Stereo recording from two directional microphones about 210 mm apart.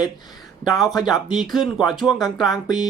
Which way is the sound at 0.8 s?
Centre (ahead or behind).